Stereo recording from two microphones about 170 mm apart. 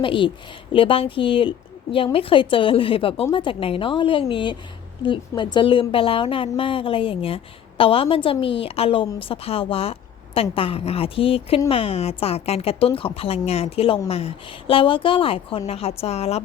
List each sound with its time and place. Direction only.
0.0 s a woman's voice: 30° left (ahead or behind)